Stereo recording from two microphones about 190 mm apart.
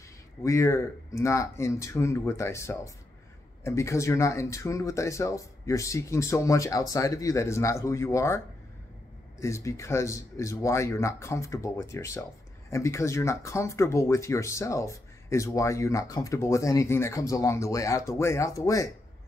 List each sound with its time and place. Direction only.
0.4 s speech: 15° left (ahead or behind)
9.4 s speech: 15° left (ahead or behind)